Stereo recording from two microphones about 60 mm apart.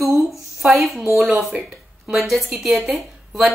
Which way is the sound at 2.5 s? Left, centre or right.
Centre.